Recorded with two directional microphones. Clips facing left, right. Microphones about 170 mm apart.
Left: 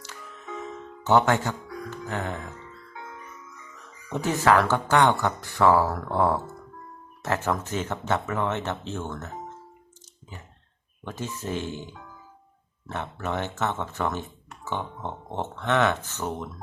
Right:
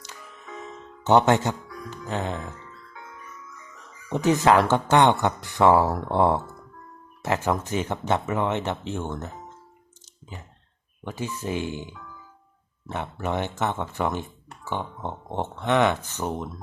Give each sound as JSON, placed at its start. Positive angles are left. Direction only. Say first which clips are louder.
{"t": 1.0, "sound": "speech", "louder": "right 2 dB", "side_deg": -20}
{"t": 4.1, "sound": "speech", "louder": "right 3 dB", "side_deg": -20}
{"t": 11.0, "sound": "speech", "louder": "right 2 dB", "side_deg": -10}
{"t": 12.9, "sound": "speech", "louder": "right 2 dB", "side_deg": -15}